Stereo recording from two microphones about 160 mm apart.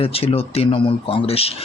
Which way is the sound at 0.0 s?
35° left (ahead or behind).